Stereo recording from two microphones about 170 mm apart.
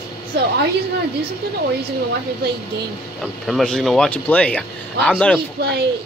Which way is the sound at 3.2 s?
Centre (ahead or behind).